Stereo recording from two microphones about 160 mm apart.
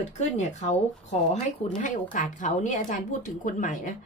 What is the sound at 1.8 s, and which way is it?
A woman's voice, 50° left (ahead or behind).